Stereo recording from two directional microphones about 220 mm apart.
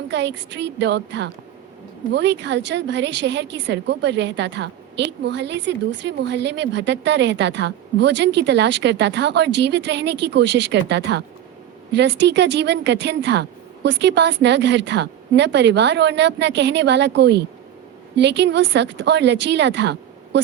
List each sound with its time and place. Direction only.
0.1 s a woman's voice: 55° right (ahead or behind)